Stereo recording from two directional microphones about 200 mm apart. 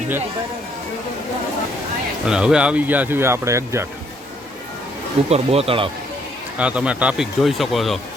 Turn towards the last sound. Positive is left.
turn(degrees=0)  # may be behind; listen again after turning